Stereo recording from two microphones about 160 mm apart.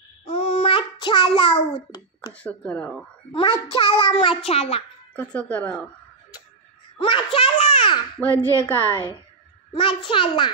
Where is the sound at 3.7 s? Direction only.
35° left (ahead or behind).